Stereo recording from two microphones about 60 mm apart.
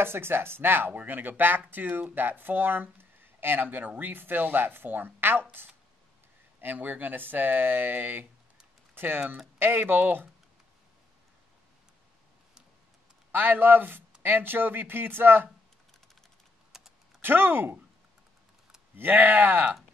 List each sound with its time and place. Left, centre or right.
0.0 s speech: right
6.6 s speech: right
13.3 s speech: right
16.7 s typing: centre
17.2 s speech: right
18.9 s speech: right